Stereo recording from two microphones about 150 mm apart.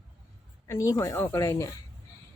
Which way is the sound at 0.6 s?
20° left (ahead or behind).